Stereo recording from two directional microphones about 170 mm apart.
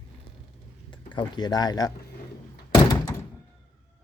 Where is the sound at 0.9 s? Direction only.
30° left (ahead or behind).